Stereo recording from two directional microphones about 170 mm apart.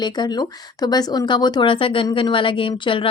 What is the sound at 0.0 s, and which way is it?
A woman's voice, 25° left (ahead or behind).